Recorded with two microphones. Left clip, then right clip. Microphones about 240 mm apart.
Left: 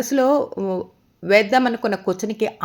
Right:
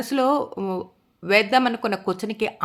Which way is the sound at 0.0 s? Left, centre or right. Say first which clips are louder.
Left 3 dB; centre.